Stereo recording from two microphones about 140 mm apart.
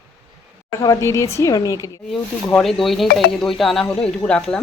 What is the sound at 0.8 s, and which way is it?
A woman's voice, 20° left (ahead or behind).